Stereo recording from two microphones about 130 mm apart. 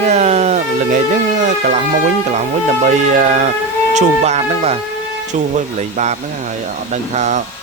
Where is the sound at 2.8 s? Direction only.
70° right (ahead or behind).